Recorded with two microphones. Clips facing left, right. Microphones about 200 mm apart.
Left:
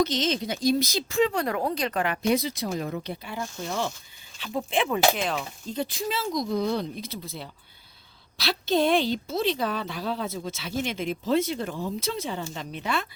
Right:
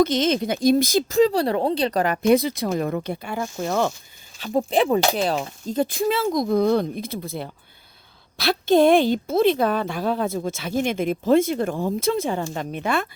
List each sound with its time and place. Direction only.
0.0 s a woman's voice: 55° right (ahead or behind)
4.4 s a woman's voice: 40° right (ahead or behind)